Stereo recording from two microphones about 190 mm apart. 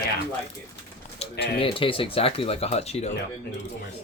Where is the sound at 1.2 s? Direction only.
35° left (ahead or behind).